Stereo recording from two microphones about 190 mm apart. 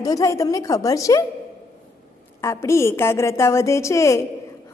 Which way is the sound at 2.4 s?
15° left (ahead or behind).